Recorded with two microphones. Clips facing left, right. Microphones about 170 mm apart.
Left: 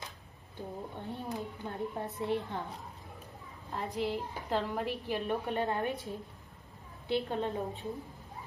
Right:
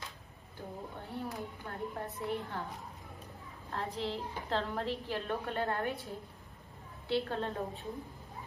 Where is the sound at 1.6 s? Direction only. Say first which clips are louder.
Left 3 dB; 20° left (ahead or behind).